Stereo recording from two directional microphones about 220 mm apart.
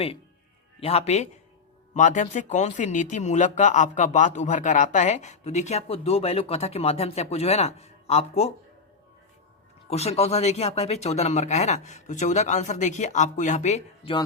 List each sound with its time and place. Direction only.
0.8 s a man's voice: 30° left (ahead or behind)
9.9 s speech: 30° left (ahead or behind)